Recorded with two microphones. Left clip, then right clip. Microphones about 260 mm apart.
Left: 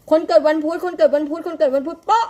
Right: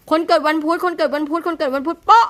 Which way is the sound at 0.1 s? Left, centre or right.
Right.